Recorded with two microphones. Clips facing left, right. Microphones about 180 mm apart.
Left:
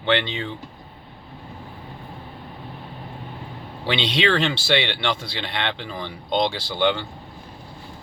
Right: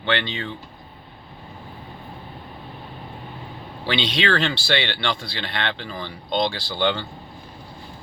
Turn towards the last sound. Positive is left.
turn(degrees=15)  # may be behind; listen again after turning